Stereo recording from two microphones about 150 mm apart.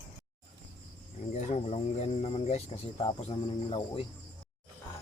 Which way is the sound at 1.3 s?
50° left (ahead or behind).